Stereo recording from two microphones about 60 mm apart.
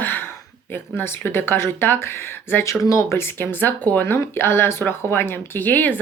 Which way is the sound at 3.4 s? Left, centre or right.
Left.